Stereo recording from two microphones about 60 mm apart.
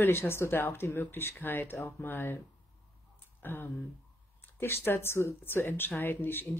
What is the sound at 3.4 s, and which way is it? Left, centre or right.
Speech, left.